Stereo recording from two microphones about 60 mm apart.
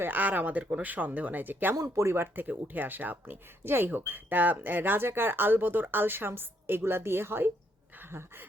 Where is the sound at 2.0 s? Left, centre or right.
Right.